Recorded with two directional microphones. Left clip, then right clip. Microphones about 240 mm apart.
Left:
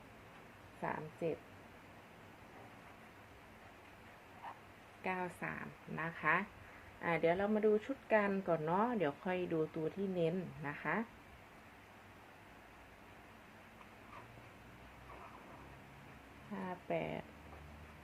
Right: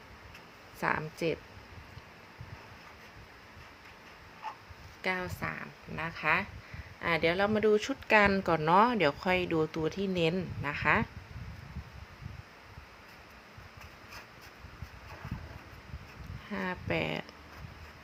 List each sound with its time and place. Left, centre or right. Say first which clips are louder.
0.8 s speech: right 10 dB; right
5.0 s a woman's voice: right 7 dB; centre
16.6 s a sound: right 7 dB; right